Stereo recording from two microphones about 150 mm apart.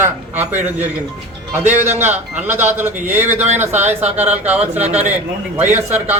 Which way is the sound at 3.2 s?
50° right (ahead or behind).